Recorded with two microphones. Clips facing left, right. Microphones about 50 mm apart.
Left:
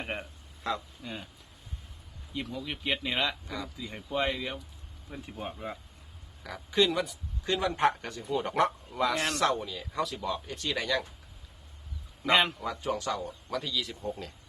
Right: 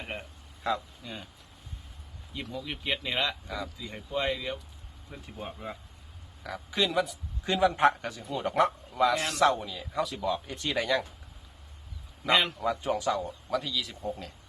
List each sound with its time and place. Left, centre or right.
0.6 s speech: centre
2.3 s speech: centre
10.4 s speech: centre
12.5 s speech: centre